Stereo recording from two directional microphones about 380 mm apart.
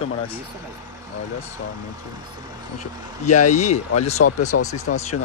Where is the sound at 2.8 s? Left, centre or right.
Centre.